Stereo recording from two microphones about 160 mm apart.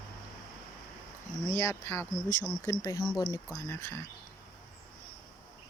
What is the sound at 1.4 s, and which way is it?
Speech, 20° left (ahead or behind).